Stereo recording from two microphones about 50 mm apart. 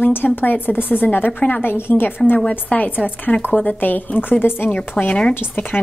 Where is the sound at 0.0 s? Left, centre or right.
Left.